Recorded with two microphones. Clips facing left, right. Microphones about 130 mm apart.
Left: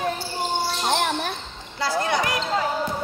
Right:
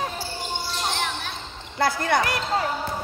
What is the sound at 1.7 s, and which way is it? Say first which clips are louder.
Speech: right 1 dB; 55° right (ahead or behind).